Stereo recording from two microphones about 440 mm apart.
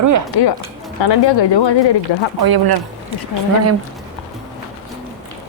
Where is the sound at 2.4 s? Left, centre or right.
Right.